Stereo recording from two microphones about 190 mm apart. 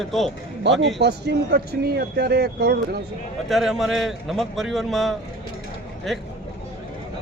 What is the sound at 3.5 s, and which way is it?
Speech, centre (ahead or behind).